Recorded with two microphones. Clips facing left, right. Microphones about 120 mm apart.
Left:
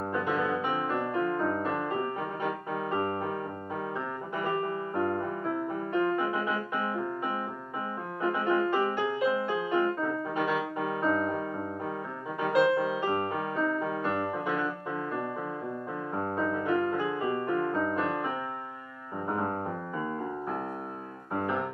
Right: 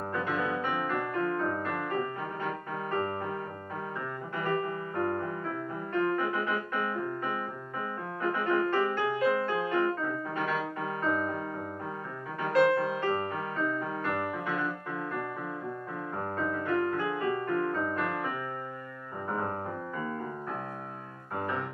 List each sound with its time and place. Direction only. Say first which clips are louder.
0.1 s music: left 2 dB; 10° left (ahead or behind)
4.4 s music: even; 20° left (ahead or behind)
16.2 s music: left 3 dB; 15° left (ahead or behind)